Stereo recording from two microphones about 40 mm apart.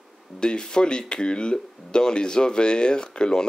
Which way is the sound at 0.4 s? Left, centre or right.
Centre.